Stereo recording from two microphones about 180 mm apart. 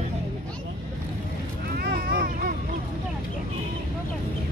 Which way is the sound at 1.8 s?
55° right (ahead or behind).